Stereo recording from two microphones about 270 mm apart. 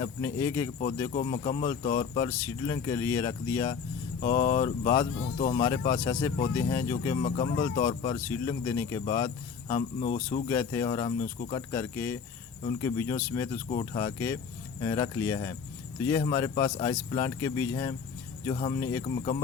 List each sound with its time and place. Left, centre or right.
0.0 s speech: centre
10.5 s speech: centre